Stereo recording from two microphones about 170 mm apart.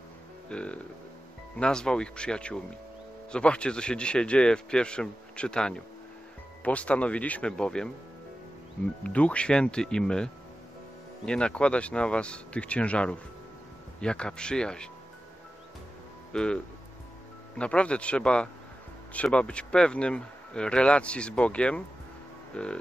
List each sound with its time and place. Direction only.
0.5 s music: 5° left (ahead or behind)
1.6 s a man's voice: 5° left (ahead or behind)
9.0 s a man's voice: 10° left (ahead or behind)
16.3 s a man's voice: 5° left (ahead or behind)